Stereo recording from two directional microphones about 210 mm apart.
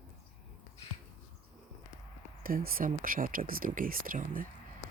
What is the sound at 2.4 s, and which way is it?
Speech, 45° right (ahead or behind).